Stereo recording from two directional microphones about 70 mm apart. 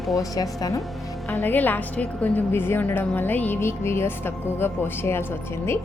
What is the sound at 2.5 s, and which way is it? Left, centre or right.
A woman's voice, left.